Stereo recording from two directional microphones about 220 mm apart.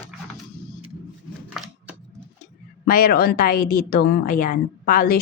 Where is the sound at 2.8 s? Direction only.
40° left (ahead or behind).